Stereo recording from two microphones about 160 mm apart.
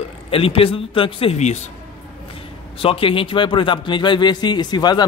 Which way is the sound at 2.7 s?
35° left (ahead or behind).